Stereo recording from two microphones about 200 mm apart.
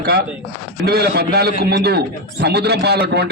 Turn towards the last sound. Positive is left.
turn(degrees=-55)  # may be behind; listen again after turning